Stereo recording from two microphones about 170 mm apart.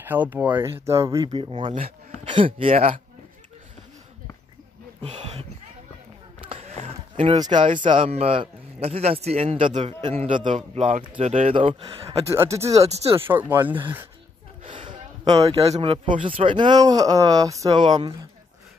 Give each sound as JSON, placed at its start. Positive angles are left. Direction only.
{"t": 0.0, "sound": "speech", "side_deg": -10}
{"t": 6.4, "sound": "a sound", "side_deg": -35}
{"t": 7.3, "sound": "a man's voice", "side_deg": -25}
{"t": 12.3, "sound": "speech", "side_deg": -15}
{"t": 12.7, "sound": "a man's voice", "side_deg": -35}
{"t": 13.3, "sound": "speech", "side_deg": -10}
{"t": 14.6, "sound": "a sound", "side_deg": -30}
{"t": 16.3, "sound": "speech", "side_deg": -30}